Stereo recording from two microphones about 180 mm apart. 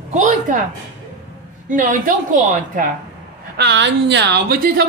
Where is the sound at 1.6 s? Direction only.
45° right (ahead or behind).